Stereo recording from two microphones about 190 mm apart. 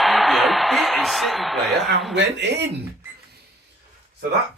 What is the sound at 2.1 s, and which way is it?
Speech, 65° right (ahead or behind).